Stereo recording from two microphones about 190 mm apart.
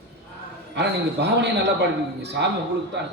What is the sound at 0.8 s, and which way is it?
Speech, 65° right (ahead or behind).